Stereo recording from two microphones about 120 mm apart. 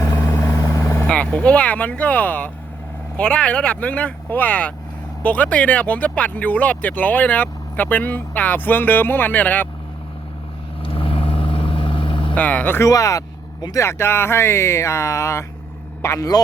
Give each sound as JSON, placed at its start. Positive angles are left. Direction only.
{"t": 0.0, "sound": "vehicle", "side_deg": 25}
{"t": 1.0, "sound": "speech", "side_deg": 10}
{"t": 10.8, "sound": "vehicle", "side_deg": 50}
{"t": 12.3, "sound": "speech", "side_deg": 10}
{"t": 12.9, "sound": "a man's voice", "side_deg": 30}